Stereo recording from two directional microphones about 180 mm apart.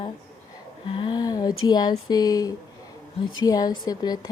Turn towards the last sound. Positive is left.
turn(degrees=20)  # may be behind; listen again after turning